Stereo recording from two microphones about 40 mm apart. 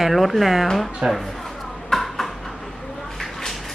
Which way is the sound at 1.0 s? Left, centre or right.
Right.